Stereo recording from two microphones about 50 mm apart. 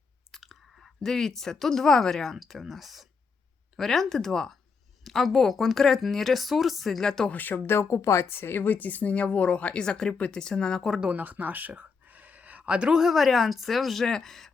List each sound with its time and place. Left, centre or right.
0.3 s speech: centre
7.3 s a woman's voice: left
7.7 s speech: left
7.9 s a woman's voice: left
8.3 s a woman's voice: left
9.8 s speech: centre
11.0 s speech: right
13.0 s speech: centre